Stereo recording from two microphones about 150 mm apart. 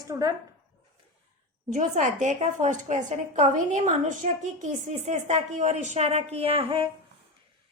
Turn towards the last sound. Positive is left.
turn(degrees=-35)  # may be behind; listen again after turning